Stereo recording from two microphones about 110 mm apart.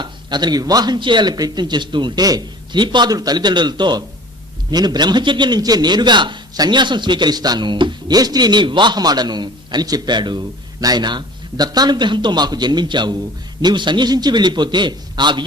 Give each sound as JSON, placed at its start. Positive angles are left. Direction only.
{"t": 0.0, "sound": "a man's voice", "side_deg": -40}